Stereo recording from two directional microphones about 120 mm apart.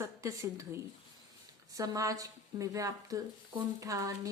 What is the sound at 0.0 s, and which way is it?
Speech, 25° right (ahead or behind).